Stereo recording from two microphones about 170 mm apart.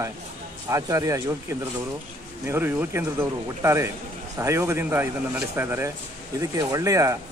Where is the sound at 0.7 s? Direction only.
20° right (ahead or behind).